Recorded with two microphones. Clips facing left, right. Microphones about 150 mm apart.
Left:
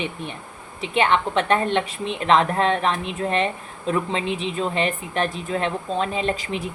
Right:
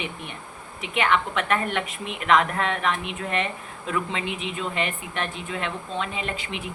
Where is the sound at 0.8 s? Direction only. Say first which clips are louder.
Left 3 dB; 30° left (ahead or behind).